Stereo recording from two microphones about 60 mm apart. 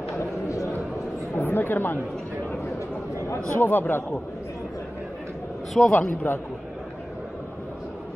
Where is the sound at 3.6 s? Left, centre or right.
Left.